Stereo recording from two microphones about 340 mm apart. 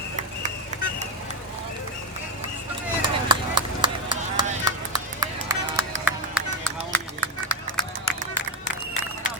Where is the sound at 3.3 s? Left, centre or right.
Centre.